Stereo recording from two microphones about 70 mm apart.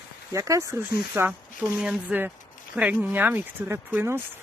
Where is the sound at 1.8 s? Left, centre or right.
Centre.